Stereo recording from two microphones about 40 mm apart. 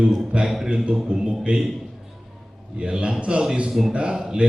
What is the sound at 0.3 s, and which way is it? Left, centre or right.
Speech, right.